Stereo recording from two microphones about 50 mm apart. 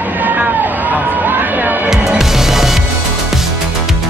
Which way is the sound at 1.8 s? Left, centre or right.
Centre.